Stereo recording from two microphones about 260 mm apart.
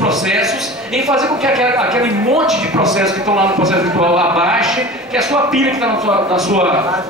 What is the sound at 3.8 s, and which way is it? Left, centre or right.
Speech, centre.